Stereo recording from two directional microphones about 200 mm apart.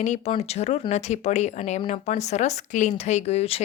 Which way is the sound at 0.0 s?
35° left (ahead or behind).